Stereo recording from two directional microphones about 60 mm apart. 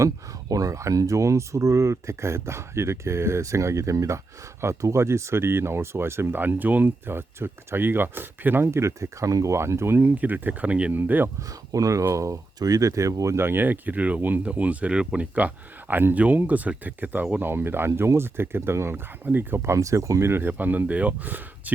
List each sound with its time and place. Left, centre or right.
0.0 s speech: right
8.7 s speech: right
10.2 s speech: right
10.9 s speech: right
11.7 s speech: right
13.3 s speech: right
19.7 s speech: right
20.5 s speech: right